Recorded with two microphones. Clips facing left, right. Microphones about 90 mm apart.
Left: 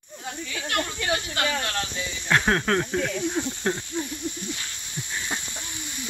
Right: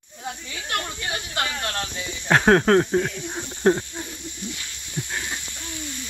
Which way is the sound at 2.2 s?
40° right (ahead or behind).